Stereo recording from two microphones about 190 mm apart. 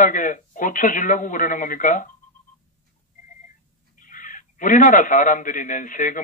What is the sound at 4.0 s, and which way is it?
A man's voice, 45° left (ahead or behind).